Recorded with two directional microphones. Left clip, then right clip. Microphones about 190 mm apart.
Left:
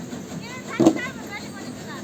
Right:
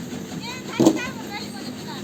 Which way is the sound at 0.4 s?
20° right (ahead or behind).